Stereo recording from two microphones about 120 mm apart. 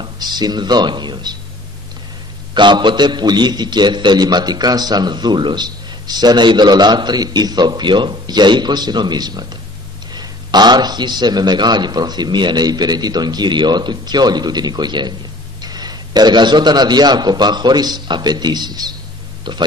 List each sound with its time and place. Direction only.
0.0 s speech: 35° right (ahead or behind)
2.5 s a man's voice: 40° right (ahead or behind)